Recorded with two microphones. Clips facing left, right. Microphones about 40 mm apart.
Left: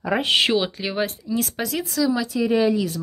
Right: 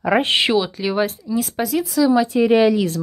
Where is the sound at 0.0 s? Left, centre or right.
Right.